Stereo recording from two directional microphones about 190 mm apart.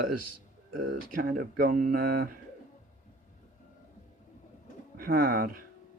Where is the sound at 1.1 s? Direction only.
50° right (ahead or behind).